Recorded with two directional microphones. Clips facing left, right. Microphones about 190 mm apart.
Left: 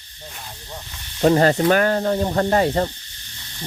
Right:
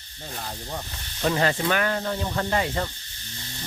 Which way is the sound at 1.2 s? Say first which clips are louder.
Left 8 dB; 40° left (ahead or behind).